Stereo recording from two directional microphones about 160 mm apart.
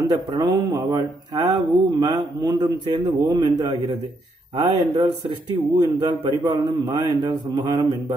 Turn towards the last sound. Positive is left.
turn(degrees=-25)  # may be behind; listen again after turning